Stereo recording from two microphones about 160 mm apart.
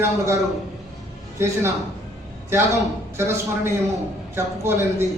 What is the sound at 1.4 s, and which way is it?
A man's voice, 20° right (ahead or behind).